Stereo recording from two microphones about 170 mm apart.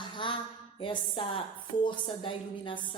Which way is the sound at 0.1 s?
30° left (ahead or behind).